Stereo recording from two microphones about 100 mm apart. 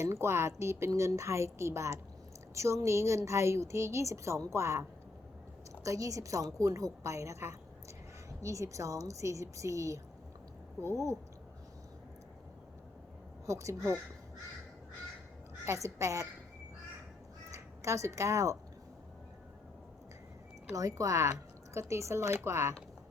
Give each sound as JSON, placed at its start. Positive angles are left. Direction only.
{"t": 0.0, "sound": "a woman's voice", "side_deg": -25}
{"t": 13.4, "sound": "a woman's voice", "side_deg": -30}
{"t": 15.6, "sound": "a woman's voice", "side_deg": -30}
{"t": 17.5, "sound": "speech", "side_deg": -30}
{"t": 20.7, "sound": "a woman's voice", "side_deg": -35}